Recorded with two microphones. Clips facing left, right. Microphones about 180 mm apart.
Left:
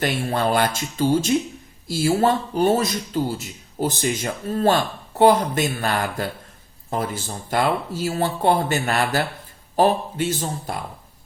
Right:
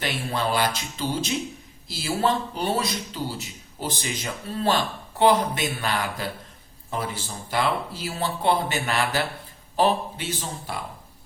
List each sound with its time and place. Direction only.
0.0 s a man's voice: 50° left (ahead or behind)